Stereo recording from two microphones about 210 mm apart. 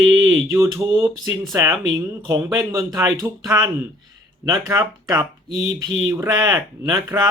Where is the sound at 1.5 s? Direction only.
20° right (ahead or behind).